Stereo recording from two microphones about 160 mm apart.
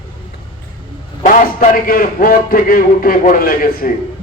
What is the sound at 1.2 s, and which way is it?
A man's voice, 55° left (ahead or behind).